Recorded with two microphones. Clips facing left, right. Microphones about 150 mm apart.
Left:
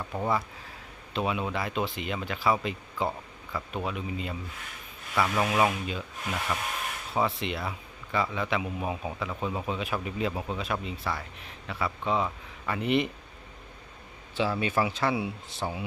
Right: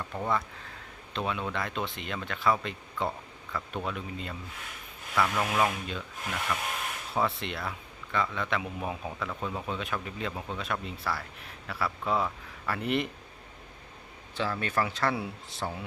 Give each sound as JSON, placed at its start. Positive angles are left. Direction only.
{"t": 0.0, "sound": "a man's voice", "side_deg": 10}
{"t": 7.1, "sound": "a man's voice", "side_deg": 0}
{"t": 14.3, "sound": "a man's voice", "side_deg": 5}